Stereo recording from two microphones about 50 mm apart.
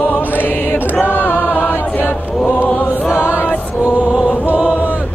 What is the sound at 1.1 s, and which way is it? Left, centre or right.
Choir, left.